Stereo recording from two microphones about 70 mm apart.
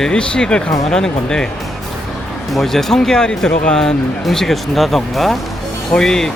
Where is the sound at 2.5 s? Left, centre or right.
Centre.